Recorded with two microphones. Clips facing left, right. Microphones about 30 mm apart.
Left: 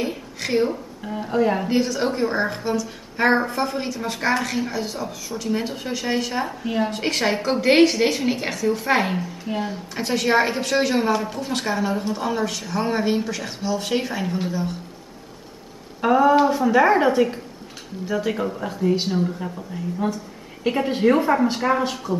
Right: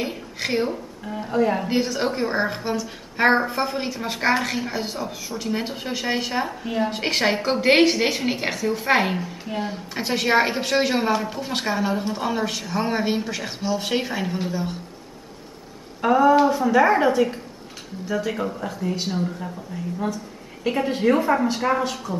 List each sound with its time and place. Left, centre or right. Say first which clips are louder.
0.0 s a sound: left 1 dB; centre
0.7 s speech: left 1 dB; centre
1.7 s a woman's voice: left 1 dB; centre
6.5 s speech: left 1 dB; centre
6.9 s a woman's voice: even; centre
16.0 s a woman's voice: even; centre